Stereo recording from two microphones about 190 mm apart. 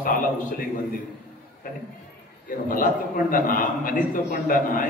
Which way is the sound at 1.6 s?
50° left (ahead or behind).